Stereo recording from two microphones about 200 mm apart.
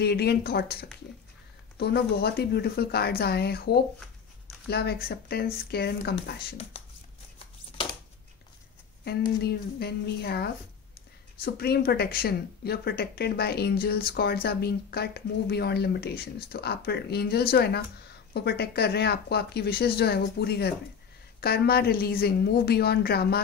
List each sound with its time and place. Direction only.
0.0 s speech: 55° left (ahead or behind)
6.7 s a sound: 30° left (ahead or behind)
9.4 s speech: 55° left (ahead or behind)